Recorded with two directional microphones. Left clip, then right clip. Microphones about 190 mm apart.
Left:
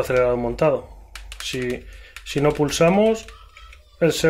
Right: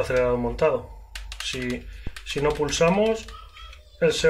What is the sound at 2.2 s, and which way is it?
Speech, 45° left (ahead or behind).